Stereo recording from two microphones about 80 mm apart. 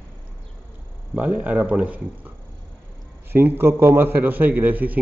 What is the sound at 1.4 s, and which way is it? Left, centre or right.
Speech, centre.